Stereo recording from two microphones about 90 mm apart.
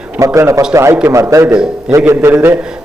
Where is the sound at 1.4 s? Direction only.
10° right (ahead or behind).